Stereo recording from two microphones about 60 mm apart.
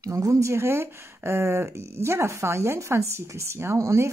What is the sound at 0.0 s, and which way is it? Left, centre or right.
Speech, right.